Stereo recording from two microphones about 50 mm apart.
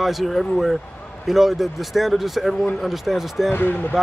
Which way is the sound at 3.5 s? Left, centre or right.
Left.